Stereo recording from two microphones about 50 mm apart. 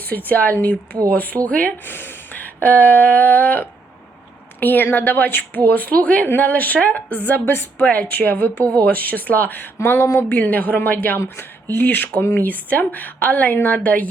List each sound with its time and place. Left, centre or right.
0.3 s a woman's voice: left
1.9 s a sound: left
4.6 s a woman's voice: left
7.9 s a woman's voice: left
9.8 s a woman's voice: left